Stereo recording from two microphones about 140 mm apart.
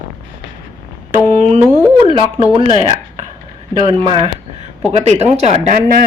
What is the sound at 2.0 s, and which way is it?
Speech, 40° right (ahead or behind).